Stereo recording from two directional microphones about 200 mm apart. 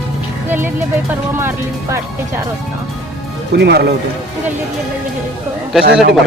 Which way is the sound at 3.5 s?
55° right (ahead or behind).